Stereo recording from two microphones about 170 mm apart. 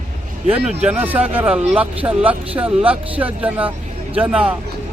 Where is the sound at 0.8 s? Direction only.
10° right (ahead or behind).